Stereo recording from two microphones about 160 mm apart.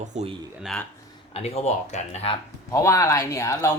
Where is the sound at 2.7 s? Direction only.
20° left (ahead or behind).